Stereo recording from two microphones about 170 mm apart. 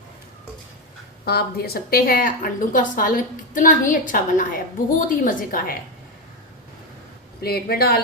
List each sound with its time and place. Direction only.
1.2 s a woman's voice: 65° left (ahead or behind)
7.4 s speech: 65° left (ahead or behind)